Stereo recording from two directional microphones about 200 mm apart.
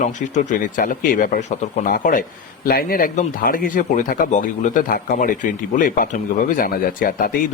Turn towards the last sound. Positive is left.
turn(degrees=45)  # may be behind; listen again after turning